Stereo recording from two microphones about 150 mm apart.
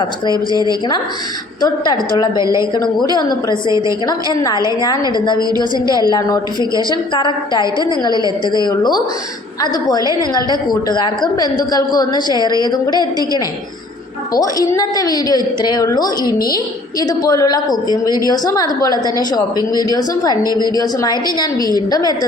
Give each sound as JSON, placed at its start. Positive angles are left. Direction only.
{"t": 1.6, "sound": "a woman's voice", "side_deg": 30}
{"t": 2.4, "sound": "a woman's voice", "side_deg": -20}
{"t": 2.7, "sound": "a woman's voice", "side_deg": 30}
{"t": 5.4, "sound": "a woman's voice", "side_deg": -25}
{"t": 6.1, "sound": "a woman's voice", "side_deg": 25}
{"t": 6.6, "sound": "a woman's voice", "side_deg": -25}
{"t": 7.1, "sound": "a woman's voice", "side_deg": 30}
{"t": 10.0, "sound": "a woman's voice", "side_deg": -25}
{"t": 10.8, "sound": "a woman's voice", "side_deg": 30}